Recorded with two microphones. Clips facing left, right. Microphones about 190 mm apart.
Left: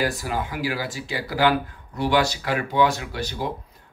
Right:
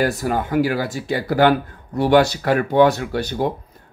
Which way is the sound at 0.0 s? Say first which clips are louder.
Right 5 dB; 55° right (ahead or behind).